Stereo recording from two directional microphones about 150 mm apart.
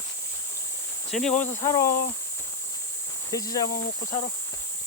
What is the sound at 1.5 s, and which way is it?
Speech, 20° left (ahead or behind).